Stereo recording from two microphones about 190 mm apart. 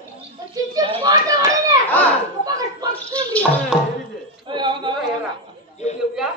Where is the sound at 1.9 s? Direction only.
10° left (ahead or behind).